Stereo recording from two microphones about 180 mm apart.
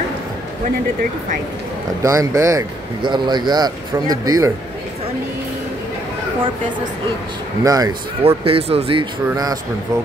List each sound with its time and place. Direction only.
2.0 s speech: 15° right (ahead or behind)
7.6 s speech: 20° right (ahead or behind)
8.2 s speech: 30° right (ahead or behind)
9.3 s speech: 20° right (ahead or behind)